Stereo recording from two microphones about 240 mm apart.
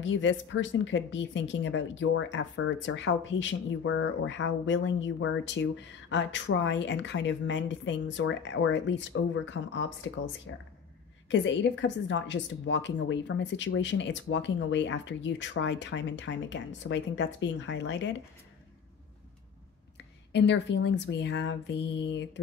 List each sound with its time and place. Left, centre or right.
0.0 s a woman's voice: left
20.3 s a woman's voice: left